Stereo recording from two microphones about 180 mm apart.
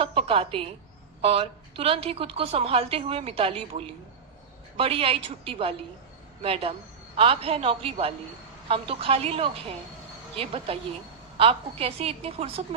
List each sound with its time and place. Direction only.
0.0 s a woman's voice: 30° right (ahead or behind)